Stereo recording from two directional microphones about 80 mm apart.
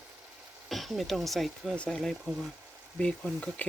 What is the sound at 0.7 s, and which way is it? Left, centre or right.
Speech, centre.